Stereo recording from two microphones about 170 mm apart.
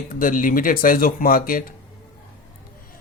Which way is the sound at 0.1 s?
55° left (ahead or behind).